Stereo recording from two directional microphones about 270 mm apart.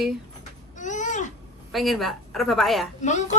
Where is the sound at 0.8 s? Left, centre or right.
Left.